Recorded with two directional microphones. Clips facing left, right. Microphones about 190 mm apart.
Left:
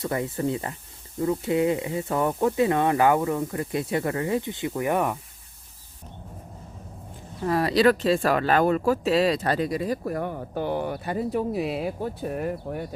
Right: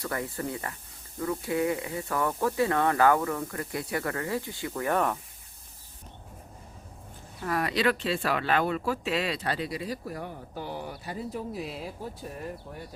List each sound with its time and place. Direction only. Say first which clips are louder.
0.0 s speech: left 6 dB; 20° left (ahead or behind)
7.4 s speech: left 7 dB; 30° left (ahead or behind); by 12.8 s 65° left (ahead or behind)